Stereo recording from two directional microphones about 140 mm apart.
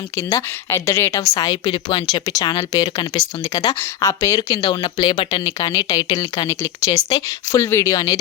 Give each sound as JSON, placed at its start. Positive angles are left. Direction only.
{"t": 0.2, "sound": "speech", "side_deg": 20}